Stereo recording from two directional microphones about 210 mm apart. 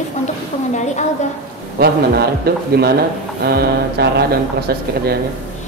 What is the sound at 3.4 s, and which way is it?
Mantra, 50° right (ahead or behind).